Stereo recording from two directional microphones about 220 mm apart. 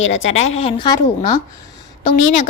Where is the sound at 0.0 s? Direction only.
60° left (ahead or behind).